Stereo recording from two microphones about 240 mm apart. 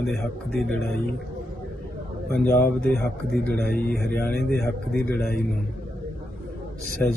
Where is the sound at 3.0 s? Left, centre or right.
Right.